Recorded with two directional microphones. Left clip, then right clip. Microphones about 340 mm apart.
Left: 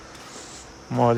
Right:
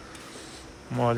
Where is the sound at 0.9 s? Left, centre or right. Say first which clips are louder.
Left 6 dB; centre.